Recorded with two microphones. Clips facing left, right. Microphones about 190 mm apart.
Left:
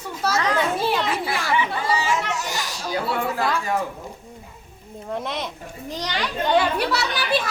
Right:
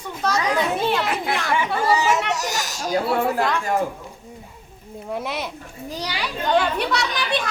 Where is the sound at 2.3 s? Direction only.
45° right (ahead or behind).